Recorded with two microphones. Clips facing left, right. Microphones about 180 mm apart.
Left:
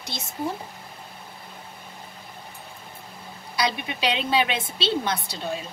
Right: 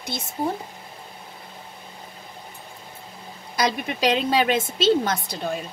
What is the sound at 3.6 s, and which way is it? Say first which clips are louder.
A woman's voice: right 3 dB; 45° right (ahead or behind).